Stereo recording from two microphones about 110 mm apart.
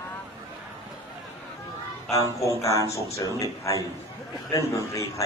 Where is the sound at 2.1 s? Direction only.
30° left (ahead or behind).